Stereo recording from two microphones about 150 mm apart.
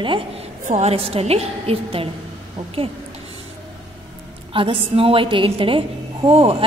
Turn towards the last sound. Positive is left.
turn(degrees=-40)  # may be behind; listen again after turning